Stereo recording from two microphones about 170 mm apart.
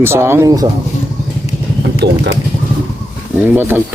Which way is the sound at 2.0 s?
90° right.